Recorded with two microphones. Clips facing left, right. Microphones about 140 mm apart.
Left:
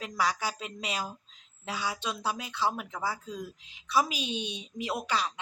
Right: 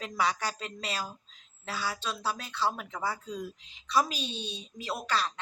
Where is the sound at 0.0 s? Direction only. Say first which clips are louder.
Even; centre (ahead or behind).